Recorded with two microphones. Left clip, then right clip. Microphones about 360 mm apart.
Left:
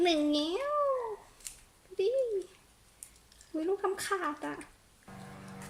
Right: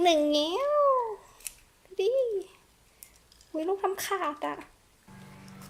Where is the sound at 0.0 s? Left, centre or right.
Centre.